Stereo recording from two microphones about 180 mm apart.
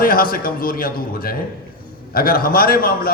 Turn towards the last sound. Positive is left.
turn(degrees=55)  # may be behind; listen again after turning